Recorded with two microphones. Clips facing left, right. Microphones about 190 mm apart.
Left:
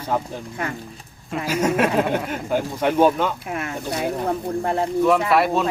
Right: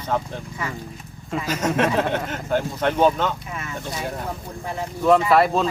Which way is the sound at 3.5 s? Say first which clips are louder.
Left 5 dB; 60° left (ahead or behind).